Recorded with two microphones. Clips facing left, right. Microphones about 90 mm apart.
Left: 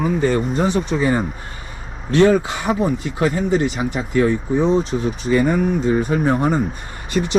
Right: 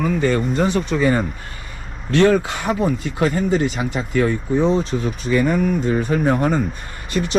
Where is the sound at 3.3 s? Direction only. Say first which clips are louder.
Even; 50° right (ahead or behind).